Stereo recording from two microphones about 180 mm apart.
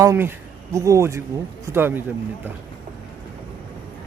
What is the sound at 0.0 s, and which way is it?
Speech, 15° right (ahead or behind).